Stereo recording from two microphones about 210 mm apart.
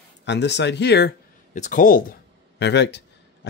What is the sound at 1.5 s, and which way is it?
Speech, 35° left (ahead or behind).